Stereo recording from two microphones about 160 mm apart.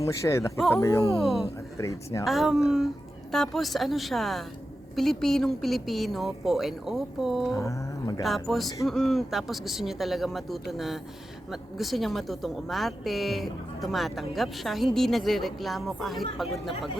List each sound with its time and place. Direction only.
0.0 s a sound: 20° left (ahead or behind)
1.1 s speech: centre (ahead or behind)
1.8 s speech: 20° left (ahead or behind)
2.2 s speech: centre (ahead or behind)
7.5 s a sound: 20° left (ahead or behind)
8.2 s speech: centre (ahead or behind)